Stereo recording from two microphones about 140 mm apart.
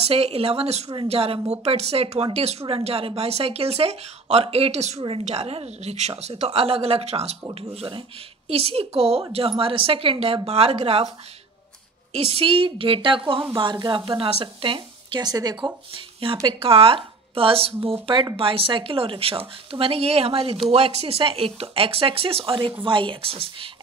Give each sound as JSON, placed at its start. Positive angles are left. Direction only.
{"t": 0.0, "sound": "speech", "side_deg": -45}
{"t": 12.1, "sound": "speech", "side_deg": -45}
{"t": 16.3, "sound": "speech", "side_deg": -20}
{"t": 16.6, "sound": "speech", "side_deg": -40}